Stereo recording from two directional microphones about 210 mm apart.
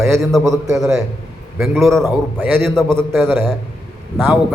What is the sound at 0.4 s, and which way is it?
Speech, 15° right (ahead or behind).